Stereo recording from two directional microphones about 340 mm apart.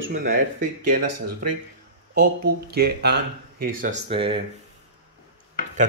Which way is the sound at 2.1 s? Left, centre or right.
Right.